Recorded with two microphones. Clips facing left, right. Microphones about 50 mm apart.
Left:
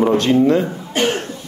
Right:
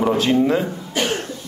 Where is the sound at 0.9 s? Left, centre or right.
Left.